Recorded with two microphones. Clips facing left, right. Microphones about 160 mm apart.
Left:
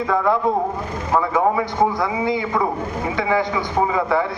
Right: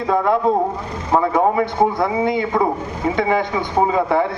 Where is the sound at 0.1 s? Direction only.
20° right (ahead or behind).